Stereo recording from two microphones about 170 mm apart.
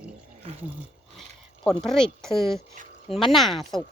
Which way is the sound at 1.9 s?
5° left (ahead or behind).